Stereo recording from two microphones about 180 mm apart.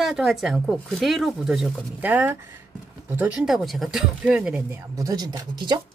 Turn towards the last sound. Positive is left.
turn(degrees=-25)  # may be behind; listen again after turning